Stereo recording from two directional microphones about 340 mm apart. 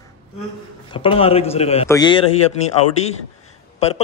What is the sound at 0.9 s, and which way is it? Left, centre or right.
A man's voice, centre.